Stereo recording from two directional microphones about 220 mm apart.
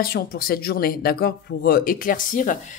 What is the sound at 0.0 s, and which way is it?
Speech, 45° left (ahead or behind).